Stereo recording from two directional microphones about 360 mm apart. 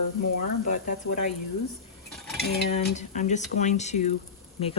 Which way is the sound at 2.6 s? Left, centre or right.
Centre.